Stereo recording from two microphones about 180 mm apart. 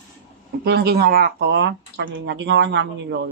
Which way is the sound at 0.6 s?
60° right (ahead or behind).